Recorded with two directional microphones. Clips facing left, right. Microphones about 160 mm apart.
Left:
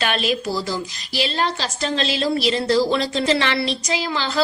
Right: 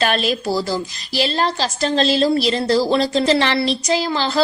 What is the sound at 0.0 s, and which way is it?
A woman's voice, 40° right (ahead or behind).